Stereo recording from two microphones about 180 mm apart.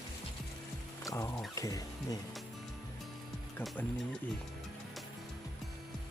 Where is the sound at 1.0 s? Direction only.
20° left (ahead or behind).